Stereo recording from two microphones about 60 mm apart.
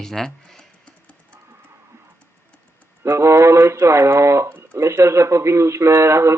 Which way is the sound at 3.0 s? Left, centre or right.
Right.